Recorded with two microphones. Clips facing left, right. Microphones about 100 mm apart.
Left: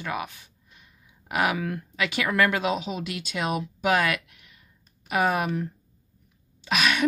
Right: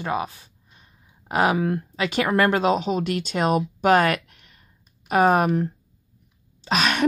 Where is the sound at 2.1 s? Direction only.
35° right (ahead or behind).